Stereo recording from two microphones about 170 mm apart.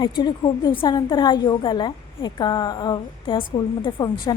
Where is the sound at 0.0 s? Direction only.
25° left (ahead or behind).